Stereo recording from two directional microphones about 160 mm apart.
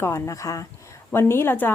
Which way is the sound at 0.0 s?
20° left (ahead or behind).